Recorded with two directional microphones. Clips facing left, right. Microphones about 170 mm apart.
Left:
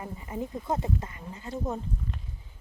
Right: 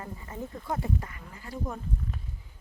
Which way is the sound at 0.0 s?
15° left (ahead or behind).